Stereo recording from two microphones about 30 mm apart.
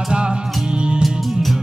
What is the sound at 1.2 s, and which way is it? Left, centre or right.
Music, centre.